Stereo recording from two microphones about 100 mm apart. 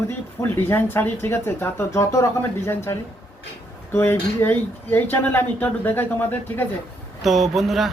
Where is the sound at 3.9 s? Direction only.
20° left (ahead or behind).